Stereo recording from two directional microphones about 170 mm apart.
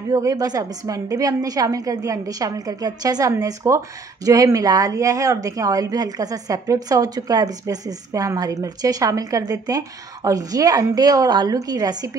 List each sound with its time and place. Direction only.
0.1 s a woman's voice: 20° right (ahead or behind)